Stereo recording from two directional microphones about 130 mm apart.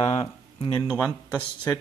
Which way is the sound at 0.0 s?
50° left (ahead or behind).